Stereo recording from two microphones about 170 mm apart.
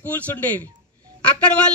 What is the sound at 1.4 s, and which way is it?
Speech, 5° left (ahead or behind).